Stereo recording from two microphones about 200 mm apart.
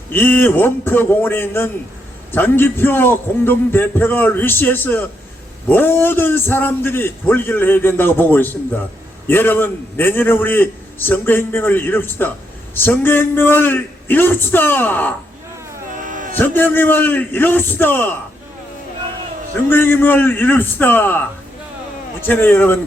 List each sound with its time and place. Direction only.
0.1 s a man's voice: 10° left (ahead or behind)
16.0 s a sound: 40° right (ahead or behind)
16.4 s a man's voice: 10° left (ahead or behind)
19.7 s a man's voice: 10° left (ahead or behind)
22.3 s a man's voice: 10° left (ahead or behind)